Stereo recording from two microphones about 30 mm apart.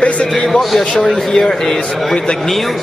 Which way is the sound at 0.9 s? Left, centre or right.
Centre.